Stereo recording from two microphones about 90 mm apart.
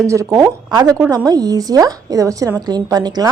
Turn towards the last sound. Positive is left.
turn(degrees=-50)  # may be behind; listen again after turning